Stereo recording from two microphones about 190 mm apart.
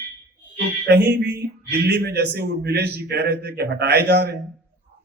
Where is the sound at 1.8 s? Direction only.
60° right (ahead or behind).